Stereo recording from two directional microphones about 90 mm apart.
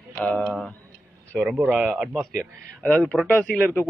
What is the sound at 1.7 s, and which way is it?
Speech, 5° right (ahead or behind).